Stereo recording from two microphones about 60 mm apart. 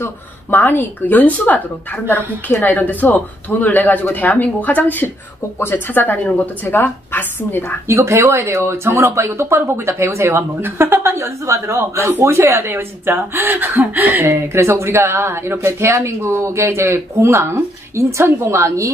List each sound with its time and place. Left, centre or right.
0.0 s speech: left
7.9 s a woman's voice: right
14.2 s a woman's voice: right